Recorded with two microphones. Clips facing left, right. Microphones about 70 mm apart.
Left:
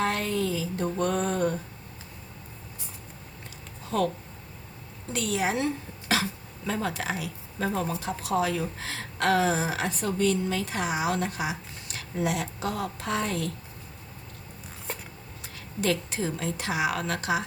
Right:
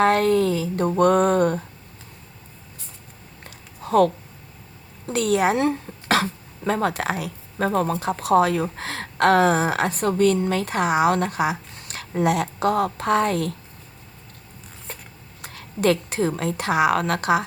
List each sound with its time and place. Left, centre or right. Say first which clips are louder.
0.0 s a woman's voice: right 10 dB; right
3.8 s a woman's voice: right 9 dB; right
14.9 s a sound: left 2 dB; centre
15.4 s a woman's voice: right 8 dB; right